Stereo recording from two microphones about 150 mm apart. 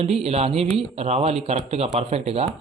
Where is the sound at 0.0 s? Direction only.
45° right (ahead or behind).